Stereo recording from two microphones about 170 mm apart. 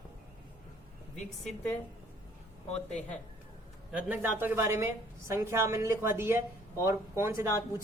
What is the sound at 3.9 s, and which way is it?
A woman's voice, 10° right (ahead or behind).